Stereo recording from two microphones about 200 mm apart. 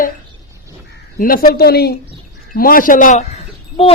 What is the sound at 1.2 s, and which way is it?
A man's voice, 45° left (ahead or behind).